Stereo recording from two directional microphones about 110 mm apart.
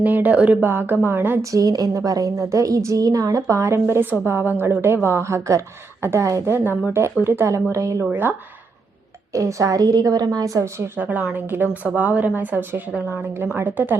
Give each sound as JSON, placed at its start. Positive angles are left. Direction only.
{"t": 0.0, "sound": "speech", "side_deg": -15}
{"t": 1.5, "sound": "a woman's voice", "side_deg": -30}
{"t": 9.3, "sound": "a woman's voice", "side_deg": -30}